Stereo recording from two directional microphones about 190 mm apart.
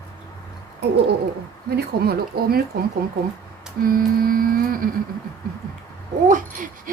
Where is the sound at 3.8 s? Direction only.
50° right (ahead or behind).